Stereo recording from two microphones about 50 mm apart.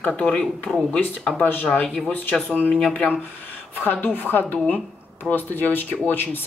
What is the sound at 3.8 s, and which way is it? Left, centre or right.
Speech, left.